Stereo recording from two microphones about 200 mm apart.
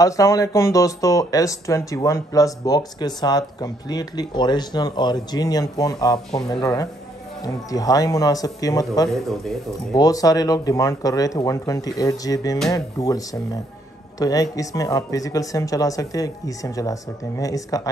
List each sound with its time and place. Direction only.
0.0 s speech: 15° left (ahead or behind)